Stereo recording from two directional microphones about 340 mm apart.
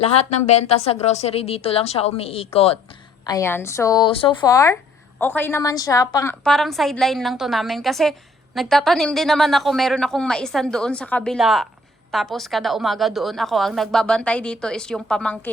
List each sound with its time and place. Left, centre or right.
0.0 s a woman's voice: centre